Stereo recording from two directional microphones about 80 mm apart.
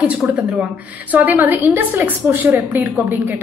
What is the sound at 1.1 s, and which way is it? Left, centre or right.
A woman's voice, right.